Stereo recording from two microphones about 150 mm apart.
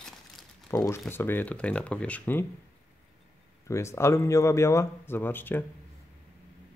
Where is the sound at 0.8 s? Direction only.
15° left (ahead or behind).